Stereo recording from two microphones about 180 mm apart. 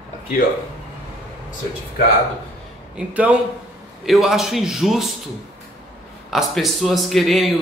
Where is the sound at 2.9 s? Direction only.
5° right (ahead or behind).